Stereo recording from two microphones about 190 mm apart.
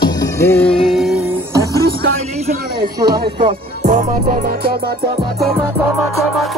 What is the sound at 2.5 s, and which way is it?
Speech, 55° right (ahead or behind).